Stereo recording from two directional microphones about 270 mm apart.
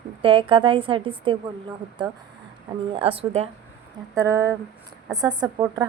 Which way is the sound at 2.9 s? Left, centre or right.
Right.